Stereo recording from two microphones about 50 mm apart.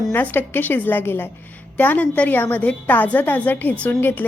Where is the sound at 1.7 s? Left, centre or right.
Left.